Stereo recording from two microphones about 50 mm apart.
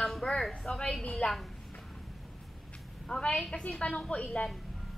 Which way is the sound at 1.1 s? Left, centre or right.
Centre.